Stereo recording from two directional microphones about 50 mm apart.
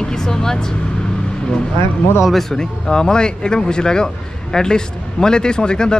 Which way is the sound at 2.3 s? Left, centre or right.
Centre.